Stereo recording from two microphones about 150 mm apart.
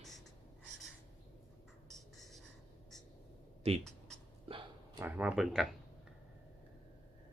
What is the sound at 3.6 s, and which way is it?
Speech, 40° right (ahead or behind).